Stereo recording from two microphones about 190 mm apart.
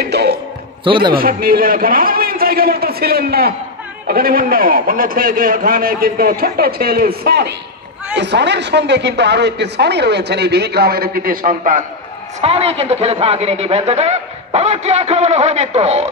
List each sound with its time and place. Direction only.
0.0 s a sound: 60° right (ahead or behind)
0.8 s a man's voice: 25° right (ahead or behind)
1.1 s a man's voice: 50° right (ahead or behind)
12.4 s a man's voice: 30° right (ahead or behind)